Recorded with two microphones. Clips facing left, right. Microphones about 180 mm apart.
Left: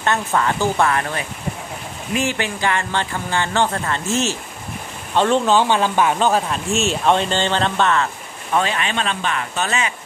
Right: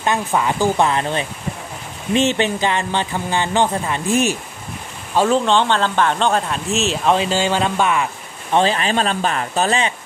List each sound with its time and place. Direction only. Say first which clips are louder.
0.0 s speech: right 1 dB; 15° right (ahead or behind)
5.1 s speech: even; 5° right (ahead or behind)
8.5 s speech: right 4 dB; 35° right (ahead or behind)